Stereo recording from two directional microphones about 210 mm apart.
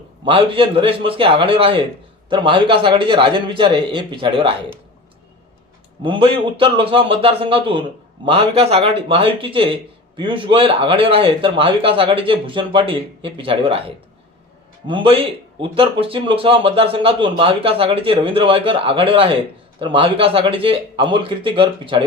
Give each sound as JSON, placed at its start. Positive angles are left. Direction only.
{"t": 0.3, "sound": "speech", "side_deg": -25}
{"t": 6.0, "sound": "speech", "side_deg": -25}